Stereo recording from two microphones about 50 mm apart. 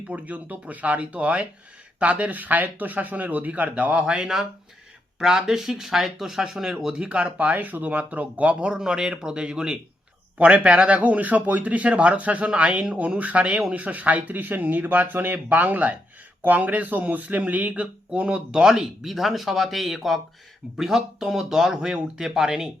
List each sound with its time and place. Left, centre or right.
0.1 s speech: right
4.0 s speech: centre
5.4 s speech: centre; by 8.7 s right
8.7 s speech: centre
18.6 s speech: centre